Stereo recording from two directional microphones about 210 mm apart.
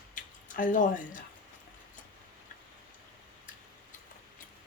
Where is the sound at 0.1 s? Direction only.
40° left (ahead or behind).